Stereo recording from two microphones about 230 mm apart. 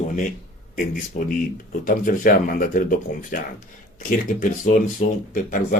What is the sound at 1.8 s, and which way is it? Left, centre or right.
Speech, left.